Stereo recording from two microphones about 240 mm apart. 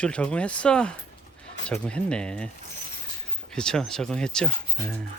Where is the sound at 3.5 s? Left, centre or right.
Centre.